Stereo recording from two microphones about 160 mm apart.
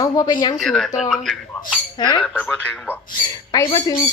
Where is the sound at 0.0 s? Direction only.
25° left (ahead or behind).